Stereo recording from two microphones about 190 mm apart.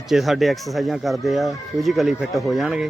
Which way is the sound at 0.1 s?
Centre (ahead or behind).